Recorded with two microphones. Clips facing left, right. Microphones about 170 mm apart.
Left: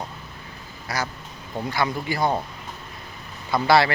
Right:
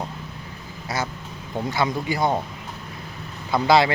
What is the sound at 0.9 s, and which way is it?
Speech, 25° right (ahead or behind).